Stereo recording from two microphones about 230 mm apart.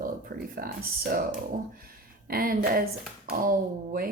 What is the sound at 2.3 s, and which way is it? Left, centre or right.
Speech, right.